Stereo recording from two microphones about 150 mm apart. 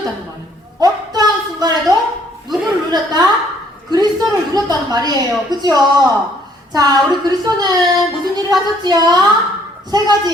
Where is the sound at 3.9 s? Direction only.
25° right (ahead or behind).